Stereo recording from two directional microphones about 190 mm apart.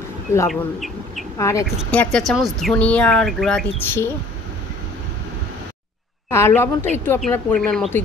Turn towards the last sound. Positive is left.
turn(degrees=5)  # may be behind; listen again after turning